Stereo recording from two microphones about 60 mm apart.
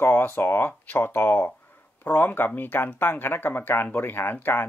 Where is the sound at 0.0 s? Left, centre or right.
Left.